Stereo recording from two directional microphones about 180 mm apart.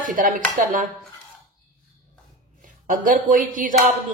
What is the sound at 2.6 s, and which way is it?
A woman's voice, 45° right (ahead or behind).